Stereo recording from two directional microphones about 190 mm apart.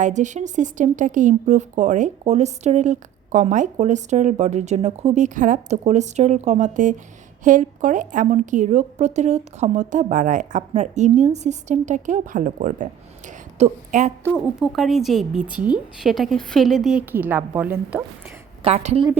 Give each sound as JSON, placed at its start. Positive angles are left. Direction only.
{"t": 0.0, "sound": "speech", "side_deg": -40}
{"t": 14.3, "sound": "a woman's voice", "side_deg": 0}
{"t": 18.6, "sound": "speech", "side_deg": -35}